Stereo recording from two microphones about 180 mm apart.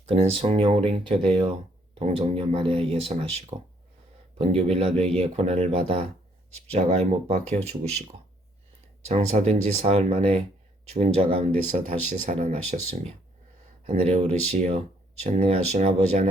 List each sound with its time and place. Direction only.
0.1 s speech: 30° right (ahead or behind)
9.0 s speech: 35° right (ahead or behind)
11.7 s speech: 45° right (ahead or behind)